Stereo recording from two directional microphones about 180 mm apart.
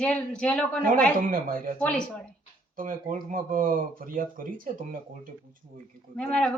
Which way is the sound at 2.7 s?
50° right (ahead or behind).